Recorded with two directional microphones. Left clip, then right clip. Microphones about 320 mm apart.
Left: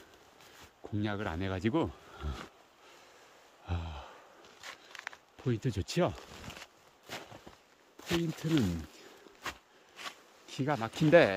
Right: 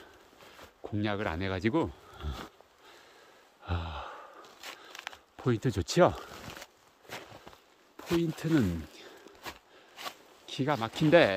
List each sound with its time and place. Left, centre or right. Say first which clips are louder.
0.8 s speech: right 4 dB; centre
3.6 s gasp: right 6 dB; centre
4.6 s biting: right 1 dB; right
5.4 s speech: right 5 dB; centre
8.0 s speech: right 3 dB; centre
10.4 s speech: right 3 dB; centre